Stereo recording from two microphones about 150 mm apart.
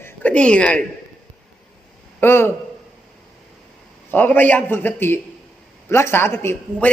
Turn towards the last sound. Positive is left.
turn(degrees=15)  # may be behind; listen again after turning